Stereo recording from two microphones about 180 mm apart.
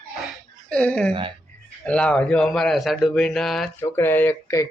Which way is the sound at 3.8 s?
10° left (ahead or behind).